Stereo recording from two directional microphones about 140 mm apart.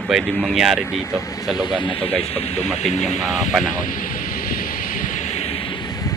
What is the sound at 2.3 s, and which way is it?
Speech, 50° left (ahead or behind).